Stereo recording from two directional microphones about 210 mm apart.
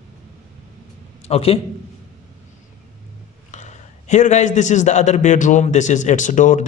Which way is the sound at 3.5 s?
35° left (ahead or behind).